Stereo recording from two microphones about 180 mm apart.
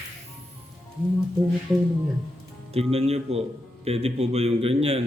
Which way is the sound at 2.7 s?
35° right (ahead or behind).